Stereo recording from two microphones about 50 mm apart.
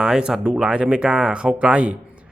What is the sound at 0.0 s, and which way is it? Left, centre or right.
Speech, centre.